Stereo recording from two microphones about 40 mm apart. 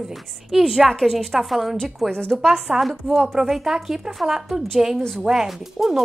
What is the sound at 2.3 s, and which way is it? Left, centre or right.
Speech, centre.